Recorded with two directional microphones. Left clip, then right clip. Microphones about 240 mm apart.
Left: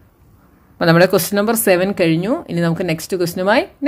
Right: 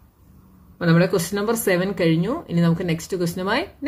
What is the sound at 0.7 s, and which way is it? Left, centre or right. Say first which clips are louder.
A woman's voice: left 8 dB; left.